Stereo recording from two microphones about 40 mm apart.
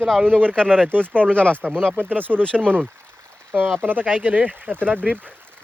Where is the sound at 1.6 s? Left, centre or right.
Right.